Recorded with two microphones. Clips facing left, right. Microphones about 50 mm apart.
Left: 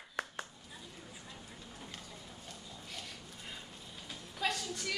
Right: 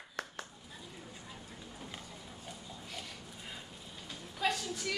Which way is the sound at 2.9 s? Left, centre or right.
Centre.